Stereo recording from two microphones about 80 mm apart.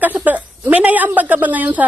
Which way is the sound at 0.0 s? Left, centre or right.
Right.